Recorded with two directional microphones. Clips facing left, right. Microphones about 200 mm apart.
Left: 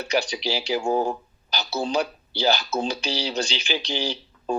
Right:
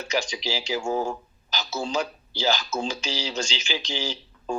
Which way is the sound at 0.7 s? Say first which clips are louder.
Left 3 dB; 35° left (ahead or behind).